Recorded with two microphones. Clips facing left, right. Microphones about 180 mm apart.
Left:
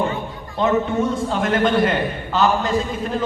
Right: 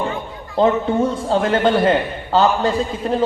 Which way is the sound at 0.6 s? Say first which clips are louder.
Right 3 dB; 30° right (ahead or behind).